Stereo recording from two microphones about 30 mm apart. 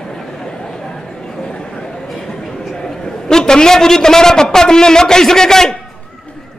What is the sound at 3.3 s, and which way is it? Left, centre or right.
A man's voice, left.